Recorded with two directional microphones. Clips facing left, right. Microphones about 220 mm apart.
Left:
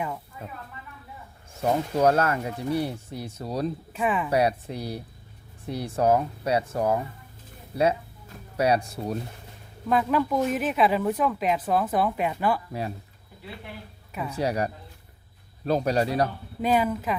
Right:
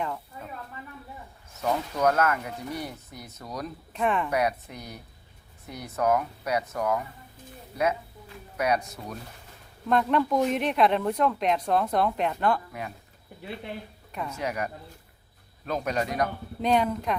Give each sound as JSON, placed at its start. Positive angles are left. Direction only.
{"t": 1.5, "sound": "speech", "side_deg": 30}
{"t": 3.9, "sound": "speech", "side_deg": 5}
{"t": 4.3, "sound": "speech", "side_deg": 30}
{"t": 8.5, "sound": "speech", "side_deg": 30}
{"t": 9.9, "sound": "speech", "side_deg": 5}
{"t": 14.1, "sound": "speech", "side_deg": 5}
{"t": 14.3, "sound": "speech", "side_deg": 35}
{"t": 16.6, "sound": "speech", "side_deg": 5}